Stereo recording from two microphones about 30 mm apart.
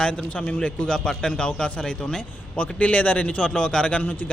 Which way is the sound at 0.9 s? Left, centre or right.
Left.